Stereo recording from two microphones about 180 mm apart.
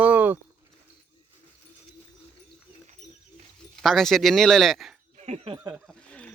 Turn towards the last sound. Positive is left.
turn(degrees=-15)  # may be behind; listen again after turning